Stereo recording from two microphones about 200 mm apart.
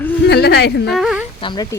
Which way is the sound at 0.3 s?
55° left (ahead or behind).